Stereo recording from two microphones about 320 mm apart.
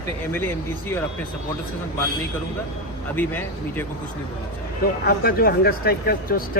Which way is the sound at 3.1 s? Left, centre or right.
Centre.